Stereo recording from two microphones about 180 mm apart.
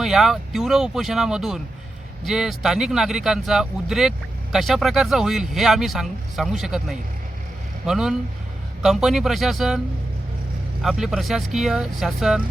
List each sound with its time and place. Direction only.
0.0 s speech: centre (ahead or behind)
10.8 s speech: centre (ahead or behind)